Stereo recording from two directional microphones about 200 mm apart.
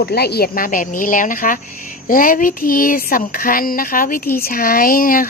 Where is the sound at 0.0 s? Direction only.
55° left (ahead or behind).